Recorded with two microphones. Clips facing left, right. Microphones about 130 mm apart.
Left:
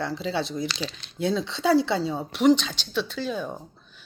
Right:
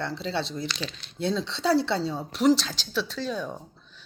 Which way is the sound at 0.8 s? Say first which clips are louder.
Left 2 dB; 30° left (ahead or behind).